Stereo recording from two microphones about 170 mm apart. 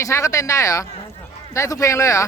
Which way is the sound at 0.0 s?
20° left (ahead or behind).